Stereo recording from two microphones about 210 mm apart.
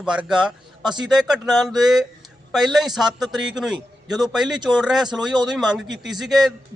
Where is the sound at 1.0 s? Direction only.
Centre (ahead or behind).